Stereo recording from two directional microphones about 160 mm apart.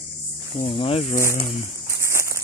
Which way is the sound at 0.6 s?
35° left (ahead or behind).